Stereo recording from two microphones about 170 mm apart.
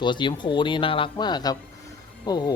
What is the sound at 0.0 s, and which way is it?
Speech, 25° left (ahead or behind).